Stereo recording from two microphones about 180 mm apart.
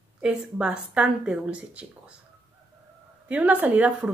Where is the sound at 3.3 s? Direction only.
5° right (ahead or behind).